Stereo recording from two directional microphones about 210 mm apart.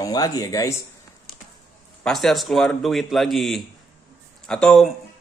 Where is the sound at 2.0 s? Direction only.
Centre (ahead or behind).